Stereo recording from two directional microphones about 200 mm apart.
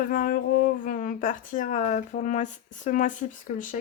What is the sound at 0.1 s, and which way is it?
Speech, 45° left (ahead or behind).